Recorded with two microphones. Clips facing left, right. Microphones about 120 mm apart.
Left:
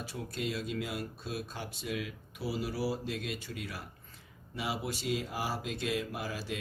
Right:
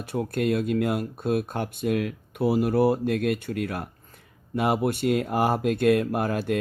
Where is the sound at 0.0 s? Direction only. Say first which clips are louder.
Right 12 dB; 55° right (ahead or behind).